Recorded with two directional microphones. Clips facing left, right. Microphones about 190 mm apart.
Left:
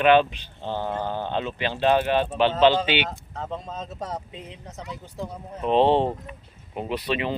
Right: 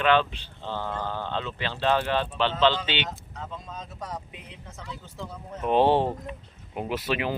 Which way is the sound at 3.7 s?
25° left (ahead or behind).